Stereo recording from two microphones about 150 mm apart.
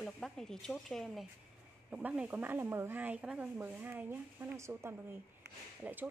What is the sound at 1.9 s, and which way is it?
Speech, 10° right (ahead or behind).